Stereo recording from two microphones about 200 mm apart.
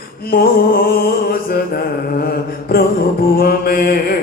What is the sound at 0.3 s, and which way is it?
Mantra, 50° left (ahead or behind).